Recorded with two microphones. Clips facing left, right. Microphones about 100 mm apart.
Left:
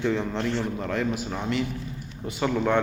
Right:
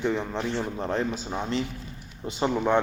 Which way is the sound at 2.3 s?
25° right (ahead or behind).